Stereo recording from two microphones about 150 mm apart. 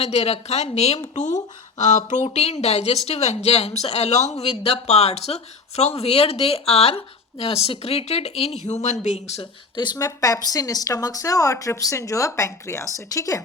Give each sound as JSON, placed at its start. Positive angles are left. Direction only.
{"t": 0.0, "sound": "speech", "side_deg": 45}
{"t": 9.7, "sound": "speech", "side_deg": 30}